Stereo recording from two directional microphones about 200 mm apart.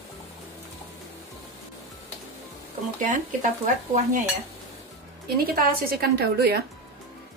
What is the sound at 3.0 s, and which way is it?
Speech, 40° right (ahead or behind).